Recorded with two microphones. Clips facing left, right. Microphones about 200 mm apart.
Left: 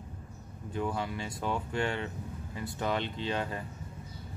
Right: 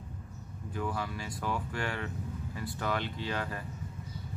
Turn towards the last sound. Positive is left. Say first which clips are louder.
# left 2 dB
turn(degrees=25)  # may be behind; listen again after turning